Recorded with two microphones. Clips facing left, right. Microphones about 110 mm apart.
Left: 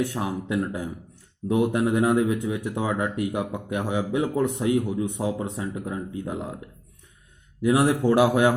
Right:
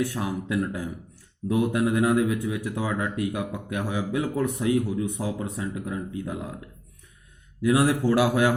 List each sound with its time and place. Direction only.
0.0 s speech: 25° left (ahead or behind)
7.6 s speech: 20° left (ahead or behind)